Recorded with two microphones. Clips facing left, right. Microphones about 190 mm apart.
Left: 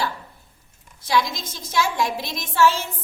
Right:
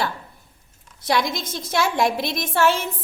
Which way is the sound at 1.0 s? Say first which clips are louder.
Right 1 dB; 55° right (ahead or behind).